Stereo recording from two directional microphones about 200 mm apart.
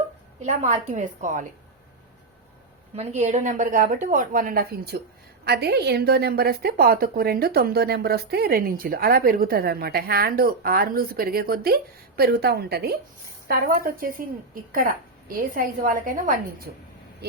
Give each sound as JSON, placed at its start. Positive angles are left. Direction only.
{"t": 0.4, "sound": "a woman's voice", "side_deg": -40}
{"t": 2.9, "sound": "a woman's voice", "side_deg": -35}